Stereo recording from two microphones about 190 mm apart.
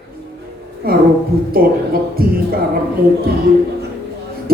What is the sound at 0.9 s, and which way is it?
Speech, 50° right (ahead or behind).